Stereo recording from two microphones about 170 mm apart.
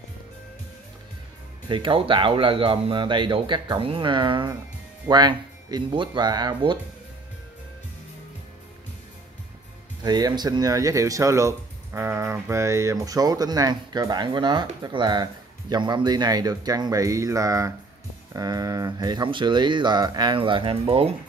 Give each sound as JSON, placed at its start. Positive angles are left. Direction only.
{"t": 1.7, "sound": "speech", "side_deg": -30}
{"t": 10.0, "sound": "speech", "side_deg": -25}